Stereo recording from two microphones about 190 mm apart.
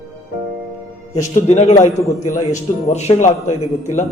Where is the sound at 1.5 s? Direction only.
35° left (ahead or behind).